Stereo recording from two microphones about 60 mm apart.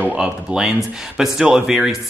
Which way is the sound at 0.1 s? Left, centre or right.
Centre.